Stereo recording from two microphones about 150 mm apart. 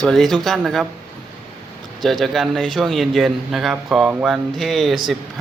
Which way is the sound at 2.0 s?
Centre (ahead or behind).